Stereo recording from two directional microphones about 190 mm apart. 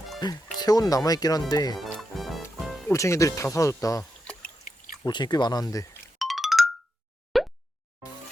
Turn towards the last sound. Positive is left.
turn(degrees=0)  # may be behind; listen again after turning